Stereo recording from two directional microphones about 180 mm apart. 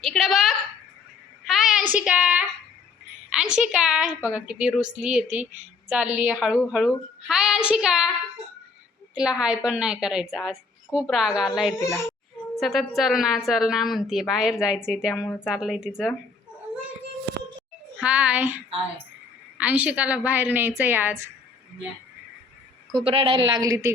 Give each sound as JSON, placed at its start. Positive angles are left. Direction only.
{"t": 0.0, "sound": "a woman's voice", "side_deg": 0}
{"t": 9.1, "sound": "a woman's voice", "side_deg": -5}
{"t": 18.0, "sound": "a woman's voice", "side_deg": -5}
{"t": 22.9, "sound": "a woman's voice", "side_deg": -25}